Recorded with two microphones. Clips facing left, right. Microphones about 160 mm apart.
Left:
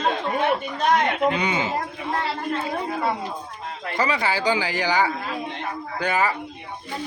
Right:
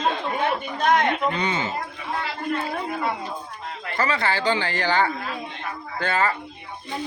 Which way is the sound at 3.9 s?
15° left (ahead or behind).